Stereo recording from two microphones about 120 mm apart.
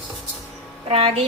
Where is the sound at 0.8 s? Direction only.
50° right (ahead or behind).